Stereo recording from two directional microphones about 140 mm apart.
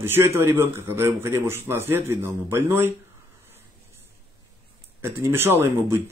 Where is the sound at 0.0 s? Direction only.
20° right (ahead or behind).